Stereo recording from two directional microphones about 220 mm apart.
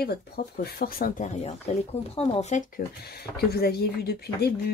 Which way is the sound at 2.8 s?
40° left (ahead or behind).